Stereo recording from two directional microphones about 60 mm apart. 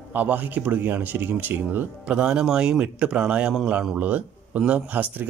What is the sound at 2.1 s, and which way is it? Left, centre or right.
Speech, centre.